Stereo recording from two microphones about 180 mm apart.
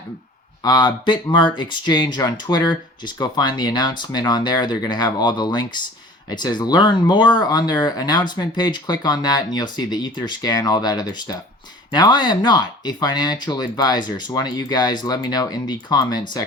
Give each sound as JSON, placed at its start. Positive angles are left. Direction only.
{"t": 0.6, "sound": "speech", "side_deg": 25}